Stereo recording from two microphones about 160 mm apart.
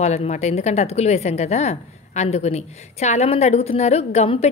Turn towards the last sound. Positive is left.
turn(degrees=40)  # may be behind; listen again after turning